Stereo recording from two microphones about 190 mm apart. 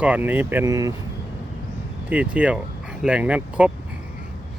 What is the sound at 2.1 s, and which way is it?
Speech, 5° right (ahead or behind).